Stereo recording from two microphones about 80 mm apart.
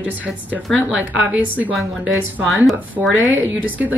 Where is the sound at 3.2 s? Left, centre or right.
Right.